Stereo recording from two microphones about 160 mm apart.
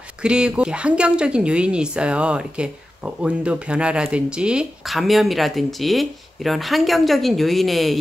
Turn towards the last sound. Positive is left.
turn(degrees=0)  # may be behind; listen again after turning